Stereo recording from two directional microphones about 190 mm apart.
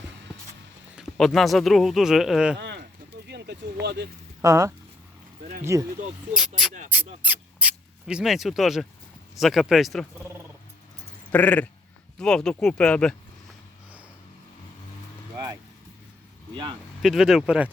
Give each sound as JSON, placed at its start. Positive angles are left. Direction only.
{"t": 0.9, "sound": "speech", "side_deg": 0}
{"t": 2.6, "sound": "bird", "side_deg": -60}
{"t": 3.2, "sound": "speech", "side_deg": -60}
{"t": 4.4, "sound": "speech", "side_deg": -15}
{"t": 5.7, "sound": "speech", "side_deg": -15}
{"t": 6.9, "sound": "speech", "side_deg": -10}
{"t": 11.3, "sound": "speech", "side_deg": 10}
{"t": 17.0, "sound": "speech", "side_deg": 0}